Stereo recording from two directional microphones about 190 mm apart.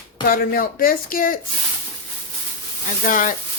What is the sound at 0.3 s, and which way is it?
Speech, 50° left (ahead or behind).